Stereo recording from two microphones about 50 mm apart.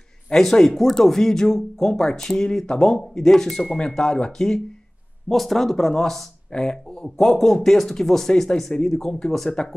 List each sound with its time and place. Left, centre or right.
0.3 s speech: centre
7.2 s speech: centre